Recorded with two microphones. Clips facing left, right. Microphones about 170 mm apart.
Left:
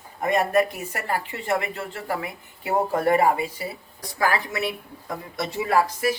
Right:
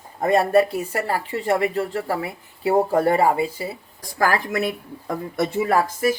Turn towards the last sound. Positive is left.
turn(degrees=-50)  # may be behind; listen again after turning